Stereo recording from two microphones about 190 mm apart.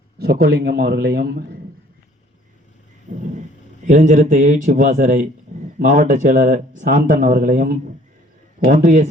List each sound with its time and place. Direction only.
0.2 s a man's voice: 55° right (ahead or behind)
3.8 s speech: 40° right (ahead or behind)